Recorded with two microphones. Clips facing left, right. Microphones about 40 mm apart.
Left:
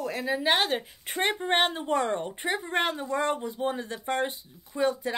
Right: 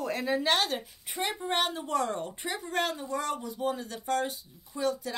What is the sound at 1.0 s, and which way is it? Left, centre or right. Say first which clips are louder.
A woman's voice: left 5 dB; left.